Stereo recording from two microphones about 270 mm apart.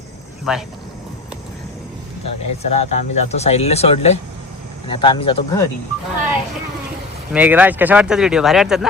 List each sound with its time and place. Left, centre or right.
0.5 s speech: centre
2.2 s speech: left
7.3 s speech: centre